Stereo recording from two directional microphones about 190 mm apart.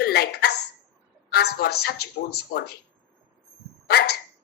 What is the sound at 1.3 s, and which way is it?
Speech, 55° left (ahead or behind).